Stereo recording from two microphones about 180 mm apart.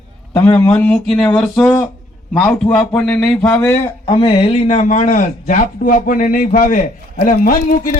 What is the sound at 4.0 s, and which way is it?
Speech, 30° left (ahead or behind).